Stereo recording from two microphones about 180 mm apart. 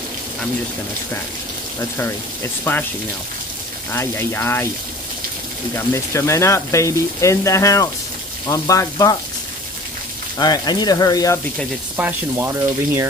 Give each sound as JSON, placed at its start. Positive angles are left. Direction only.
{"t": 2.0, "sound": "speech", "side_deg": 15}
{"t": 3.9, "sound": "speech", "side_deg": 15}
{"t": 5.9, "sound": "speech", "side_deg": 15}
{"t": 10.3, "sound": "speech", "side_deg": 20}
{"t": 12.0, "sound": "speech", "side_deg": -10}